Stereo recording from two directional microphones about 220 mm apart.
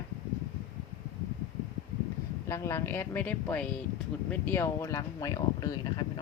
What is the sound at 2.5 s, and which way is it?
Speech, 10° left (ahead or behind).